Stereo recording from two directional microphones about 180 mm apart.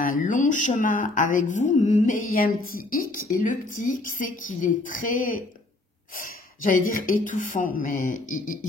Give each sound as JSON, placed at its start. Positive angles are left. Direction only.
{"t": 0.0, "sound": "speech", "side_deg": 45}